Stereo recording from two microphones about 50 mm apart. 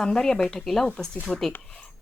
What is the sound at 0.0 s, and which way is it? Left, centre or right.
A woman's voice, centre.